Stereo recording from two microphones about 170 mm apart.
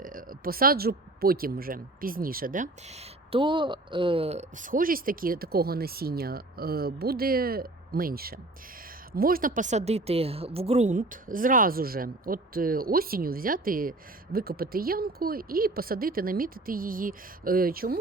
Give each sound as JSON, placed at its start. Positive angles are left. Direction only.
{"t": 0.0, "sound": "speech", "side_deg": -55}